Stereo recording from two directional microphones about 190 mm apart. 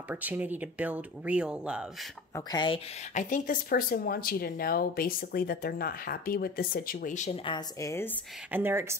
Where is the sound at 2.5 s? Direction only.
25° left (ahead or behind).